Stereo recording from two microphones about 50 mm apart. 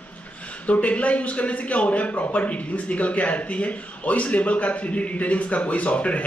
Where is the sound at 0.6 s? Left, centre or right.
Left.